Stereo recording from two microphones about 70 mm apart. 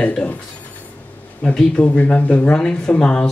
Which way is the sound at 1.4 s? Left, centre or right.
Centre.